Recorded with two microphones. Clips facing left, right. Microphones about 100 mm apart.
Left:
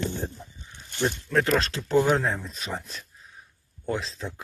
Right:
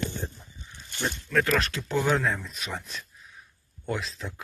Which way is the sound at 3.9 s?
30° left (ahead or behind).